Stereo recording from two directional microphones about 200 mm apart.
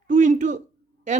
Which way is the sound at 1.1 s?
35° right (ahead or behind).